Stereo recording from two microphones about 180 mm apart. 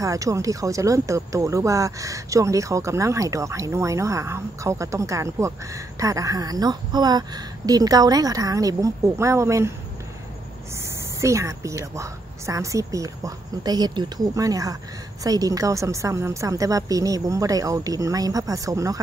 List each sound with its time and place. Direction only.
0.0 s speech: 20° right (ahead or behind)
10.8 s a woman's voice: 15° right (ahead or behind)